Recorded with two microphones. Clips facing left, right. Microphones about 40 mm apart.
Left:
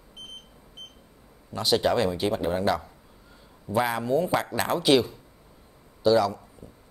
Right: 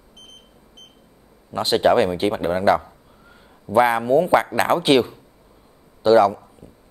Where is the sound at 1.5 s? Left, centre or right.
Right.